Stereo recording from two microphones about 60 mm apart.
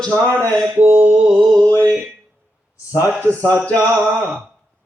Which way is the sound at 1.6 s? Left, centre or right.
Left.